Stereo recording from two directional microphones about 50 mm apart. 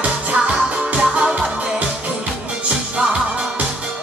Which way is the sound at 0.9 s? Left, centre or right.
Centre.